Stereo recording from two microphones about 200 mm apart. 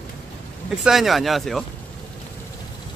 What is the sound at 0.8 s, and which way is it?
Speech, centre (ahead or behind).